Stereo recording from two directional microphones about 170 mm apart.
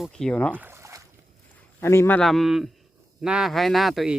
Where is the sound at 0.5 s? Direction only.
10° right (ahead or behind).